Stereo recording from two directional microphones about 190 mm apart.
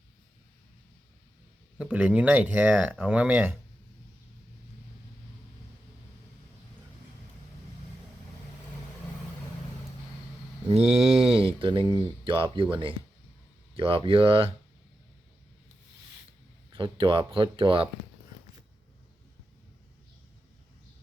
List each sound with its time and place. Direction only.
1.8 s speech: 5° right (ahead or behind)
10.7 s speech: 30° right (ahead or behind)
13.7 s speech: 30° right (ahead or behind)
16.7 s speech: 25° right (ahead or behind)